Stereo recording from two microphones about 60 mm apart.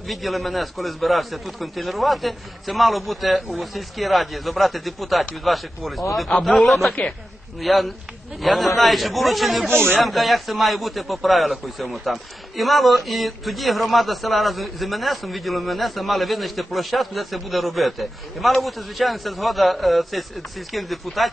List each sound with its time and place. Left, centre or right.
0.1 s a man's voice: centre
9.7 s speech: right
9.9 s a man's voice: centre